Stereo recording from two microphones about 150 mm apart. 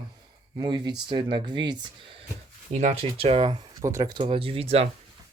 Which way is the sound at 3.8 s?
20° right (ahead or behind).